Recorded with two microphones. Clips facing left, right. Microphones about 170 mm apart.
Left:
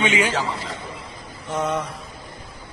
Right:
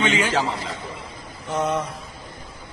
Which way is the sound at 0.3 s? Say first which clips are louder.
Right 2 dB; 35° right (ahead or behind).